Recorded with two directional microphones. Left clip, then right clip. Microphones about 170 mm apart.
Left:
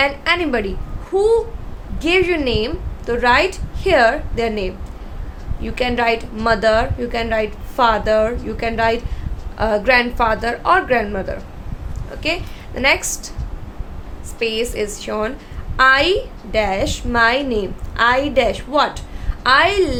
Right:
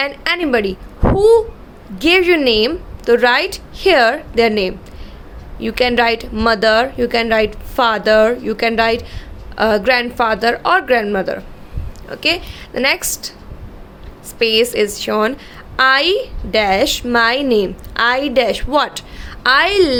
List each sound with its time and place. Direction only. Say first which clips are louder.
0.0 s a woman's voice: left 1 dB; 30° right (ahead or behind)
14.3 s a woman's voice: right 7 dB; 35° right (ahead or behind)